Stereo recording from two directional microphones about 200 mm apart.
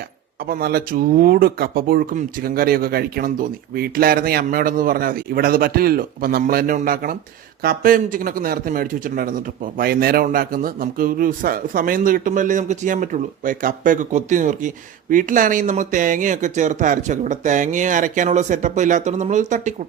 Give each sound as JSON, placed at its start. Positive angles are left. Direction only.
{"t": 0.4, "sound": "speech", "side_deg": -50}